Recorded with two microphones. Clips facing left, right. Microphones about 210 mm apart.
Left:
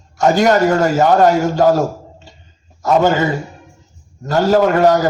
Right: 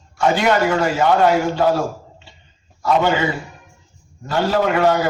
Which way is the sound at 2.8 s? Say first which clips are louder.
Left 4 dB; 45° left (ahead or behind).